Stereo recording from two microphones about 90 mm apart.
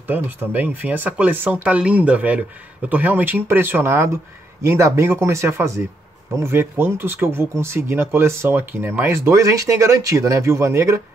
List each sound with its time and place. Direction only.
0.0 s speech: 20° right (ahead or behind)